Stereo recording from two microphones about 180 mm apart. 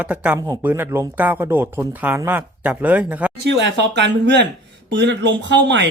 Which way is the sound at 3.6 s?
75° right (ahead or behind).